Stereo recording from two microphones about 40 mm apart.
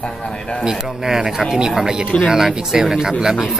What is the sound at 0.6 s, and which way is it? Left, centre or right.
Speech, centre.